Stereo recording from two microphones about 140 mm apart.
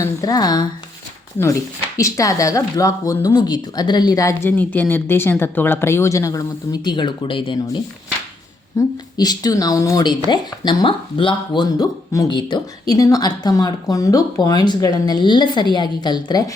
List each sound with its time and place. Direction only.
0.0 s speech: 25° left (ahead or behind)
2.0 s speech: 20° left (ahead or behind)
8.8 s speech: 25° left (ahead or behind)